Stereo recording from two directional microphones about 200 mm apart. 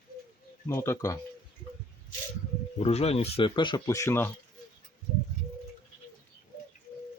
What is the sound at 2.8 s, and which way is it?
Speech, 30° left (ahead or behind).